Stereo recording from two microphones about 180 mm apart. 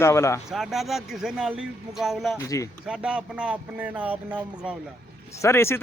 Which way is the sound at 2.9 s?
5° right (ahead or behind).